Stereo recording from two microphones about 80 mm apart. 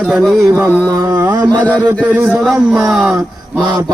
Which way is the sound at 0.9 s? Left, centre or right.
Right.